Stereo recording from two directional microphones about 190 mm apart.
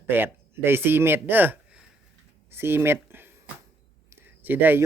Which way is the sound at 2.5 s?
10° right (ahead or behind).